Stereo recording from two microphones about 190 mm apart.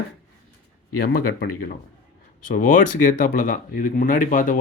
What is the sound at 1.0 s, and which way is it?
Speech, 55° left (ahead or behind).